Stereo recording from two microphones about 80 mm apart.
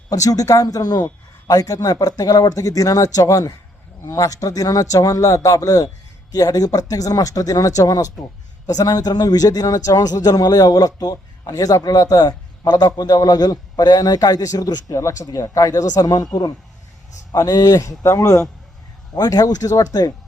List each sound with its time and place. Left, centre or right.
0.1 s speech: left
19.1 s speech: left